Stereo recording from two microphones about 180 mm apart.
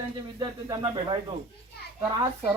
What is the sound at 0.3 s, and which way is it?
Speech, 20° right (ahead or behind).